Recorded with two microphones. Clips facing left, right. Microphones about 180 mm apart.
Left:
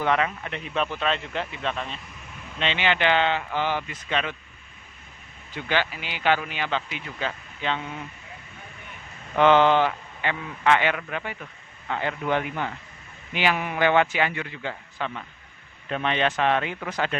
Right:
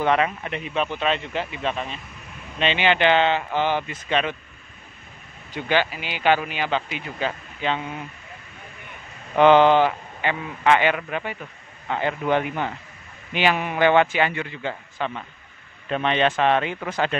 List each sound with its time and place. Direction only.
0.0 s a man's voice: 20° right (ahead or behind)
0.7 s speech: centre (ahead or behind)
2.6 s a man's voice: 15° right (ahead or behind)
5.7 s speech: 15° right (ahead or behind)
9.4 s a man's voice: 15° right (ahead or behind)